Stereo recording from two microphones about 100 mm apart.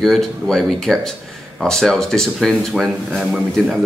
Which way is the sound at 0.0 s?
5° left (ahead or behind).